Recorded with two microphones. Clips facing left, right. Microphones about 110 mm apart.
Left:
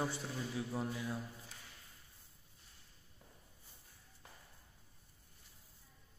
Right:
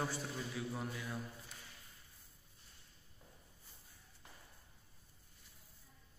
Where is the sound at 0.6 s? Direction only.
25° left (ahead or behind).